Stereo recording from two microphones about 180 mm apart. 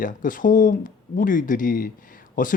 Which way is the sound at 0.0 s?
50° left (ahead or behind).